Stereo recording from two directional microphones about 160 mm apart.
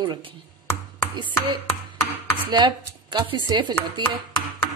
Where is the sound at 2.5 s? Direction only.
30° right (ahead or behind).